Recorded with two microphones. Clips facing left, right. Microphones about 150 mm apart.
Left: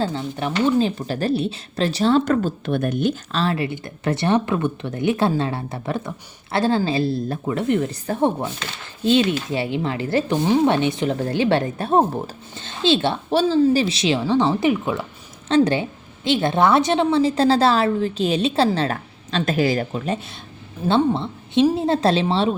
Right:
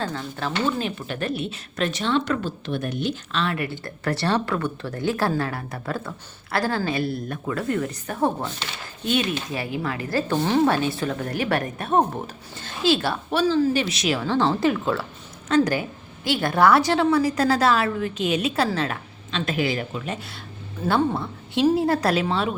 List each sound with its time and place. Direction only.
0.0 s a woman's voice: 25° left (ahead or behind)
0.8 s a woman's voice: 35° left (ahead or behind)
3.4 s a woman's voice: 25° left (ahead or behind)
9.5 s a woman's voice: 25° left (ahead or behind)
15.4 s a woman's voice: 25° left (ahead or behind)
20.8 s a woman's voice: 25° left (ahead or behind)